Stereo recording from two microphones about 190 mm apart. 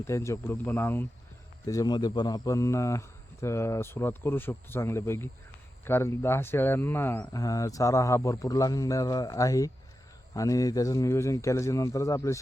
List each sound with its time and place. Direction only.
0.0 s speech: 15° left (ahead or behind)